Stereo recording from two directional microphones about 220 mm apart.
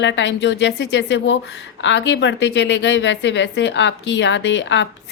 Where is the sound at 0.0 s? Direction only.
55° left (ahead or behind).